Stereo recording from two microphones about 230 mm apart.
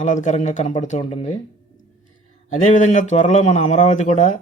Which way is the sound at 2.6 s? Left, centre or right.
Left.